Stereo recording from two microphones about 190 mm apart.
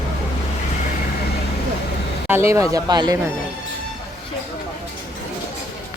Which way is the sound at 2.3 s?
15° right (ahead or behind).